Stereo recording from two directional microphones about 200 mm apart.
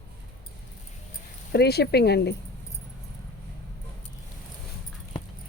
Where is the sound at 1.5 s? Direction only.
55° left (ahead or behind).